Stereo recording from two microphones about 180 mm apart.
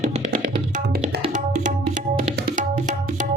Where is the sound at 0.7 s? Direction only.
45° right (ahead or behind).